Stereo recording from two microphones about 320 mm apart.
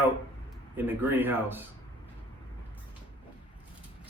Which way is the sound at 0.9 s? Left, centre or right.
Centre.